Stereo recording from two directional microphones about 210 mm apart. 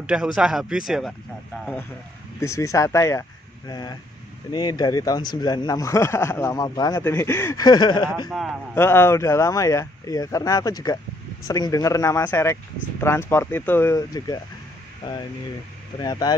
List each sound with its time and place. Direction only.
0.0 s speech: 5° right (ahead or behind)
2.4 s speech: 15° left (ahead or behind)
8.3 s speech: centre (ahead or behind)
8.7 s speech: 10° left (ahead or behind)
16.0 s speech: 20° left (ahead or behind)